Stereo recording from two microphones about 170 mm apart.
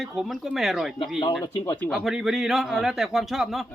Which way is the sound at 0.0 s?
Centre (ahead or behind).